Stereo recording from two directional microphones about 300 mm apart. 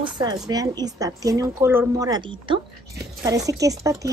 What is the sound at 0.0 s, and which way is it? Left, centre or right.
Speech, centre.